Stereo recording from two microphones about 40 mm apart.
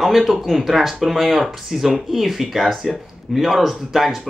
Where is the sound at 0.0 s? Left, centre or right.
Centre.